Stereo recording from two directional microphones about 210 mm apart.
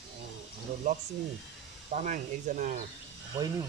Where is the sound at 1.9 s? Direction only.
35° right (ahead or behind).